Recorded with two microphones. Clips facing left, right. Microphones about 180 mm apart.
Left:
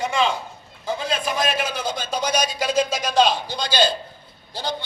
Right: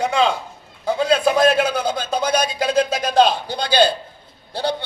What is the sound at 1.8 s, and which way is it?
A man's voice, 60° right (ahead or behind).